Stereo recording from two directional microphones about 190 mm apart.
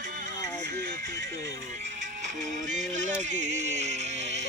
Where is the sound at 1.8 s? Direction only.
40° right (ahead or behind).